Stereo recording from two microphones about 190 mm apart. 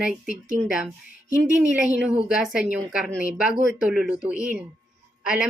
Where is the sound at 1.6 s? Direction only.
5° right (ahead or behind).